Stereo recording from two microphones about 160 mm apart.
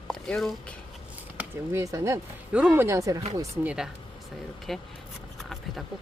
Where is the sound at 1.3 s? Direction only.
15° right (ahead or behind).